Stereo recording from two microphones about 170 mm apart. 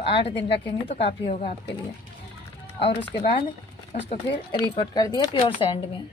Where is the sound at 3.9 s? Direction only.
30° left (ahead or behind).